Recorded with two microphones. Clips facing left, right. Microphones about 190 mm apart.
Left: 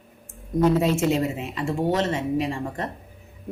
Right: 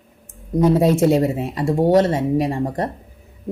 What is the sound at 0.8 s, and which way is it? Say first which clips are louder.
A woman's voice: right 6 dB; 40° right (ahead or behind).